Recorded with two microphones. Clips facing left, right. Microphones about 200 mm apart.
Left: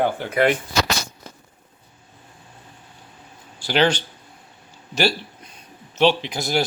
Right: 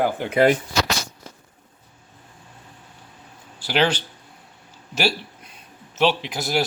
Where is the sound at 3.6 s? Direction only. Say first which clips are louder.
Left 2 dB; 5° right (ahead or behind).